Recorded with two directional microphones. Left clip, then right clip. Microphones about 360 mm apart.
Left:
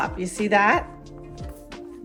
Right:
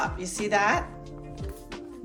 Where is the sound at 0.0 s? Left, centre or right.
Left.